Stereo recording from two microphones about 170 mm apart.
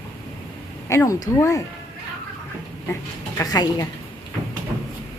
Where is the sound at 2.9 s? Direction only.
20° left (ahead or behind).